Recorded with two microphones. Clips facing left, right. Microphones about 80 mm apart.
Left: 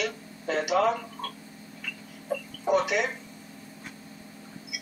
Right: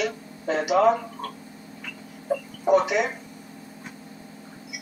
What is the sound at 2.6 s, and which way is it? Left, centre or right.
Speech, centre.